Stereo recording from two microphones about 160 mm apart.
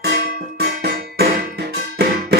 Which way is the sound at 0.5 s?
80° right.